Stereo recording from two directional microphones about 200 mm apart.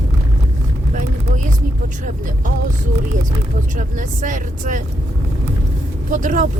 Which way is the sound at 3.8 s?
40° right (ahead or behind).